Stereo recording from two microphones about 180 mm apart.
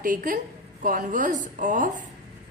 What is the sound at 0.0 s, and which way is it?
A woman's voice, 45° right (ahead or behind).